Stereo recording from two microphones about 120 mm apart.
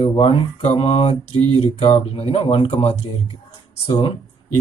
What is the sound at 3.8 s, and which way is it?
Speech, 40° left (ahead or behind).